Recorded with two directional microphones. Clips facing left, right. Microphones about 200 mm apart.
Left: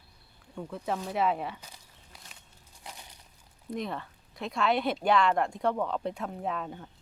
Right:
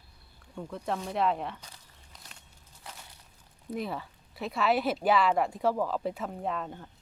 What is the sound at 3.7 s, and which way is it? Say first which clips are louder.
Speech: even; 5° right (ahead or behind).